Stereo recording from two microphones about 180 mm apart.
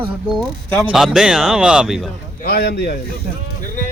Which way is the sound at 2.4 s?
60° left (ahead or behind).